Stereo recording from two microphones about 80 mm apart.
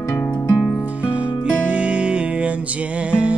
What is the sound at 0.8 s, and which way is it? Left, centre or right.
Music, centre.